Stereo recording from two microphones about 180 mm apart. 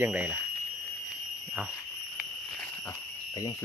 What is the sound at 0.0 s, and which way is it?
Speech, 10° right (ahead or behind).